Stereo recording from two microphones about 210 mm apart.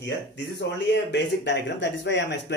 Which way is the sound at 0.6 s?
55° left (ahead or behind).